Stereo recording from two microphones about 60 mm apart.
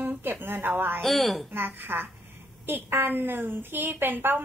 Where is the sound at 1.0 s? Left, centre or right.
Centre.